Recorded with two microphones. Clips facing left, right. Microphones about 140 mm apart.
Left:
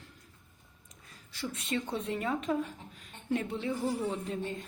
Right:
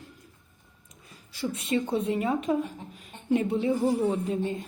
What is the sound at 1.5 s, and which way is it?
A woman's voice, 10° right (ahead or behind).